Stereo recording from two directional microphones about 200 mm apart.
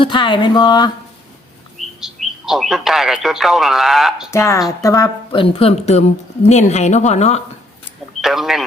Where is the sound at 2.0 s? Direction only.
Centre (ahead or behind).